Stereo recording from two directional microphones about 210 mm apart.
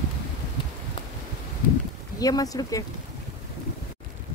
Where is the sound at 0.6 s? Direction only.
25° left (ahead or behind).